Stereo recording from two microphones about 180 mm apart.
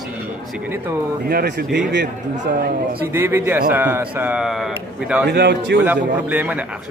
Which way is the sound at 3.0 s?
10° right (ahead or behind).